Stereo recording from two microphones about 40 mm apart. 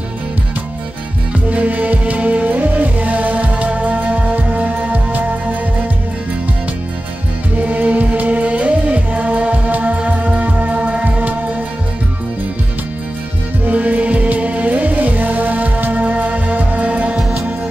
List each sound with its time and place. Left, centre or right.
1.5 s music: right
7.6 s music: right
13.7 s music: right